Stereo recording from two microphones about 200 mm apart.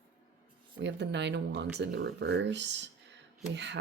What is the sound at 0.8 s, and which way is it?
Speech, 60° right (ahead or behind).